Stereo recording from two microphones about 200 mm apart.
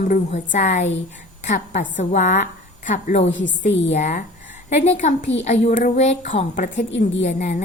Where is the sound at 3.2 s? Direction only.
65° left (ahead or behind).